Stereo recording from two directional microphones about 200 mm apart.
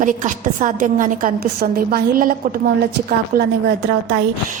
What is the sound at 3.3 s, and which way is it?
Speech, 45° right (ahead or behind).